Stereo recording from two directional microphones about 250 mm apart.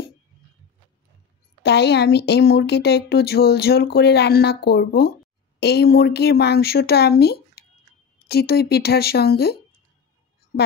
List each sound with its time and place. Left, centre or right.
1.6 s speech: left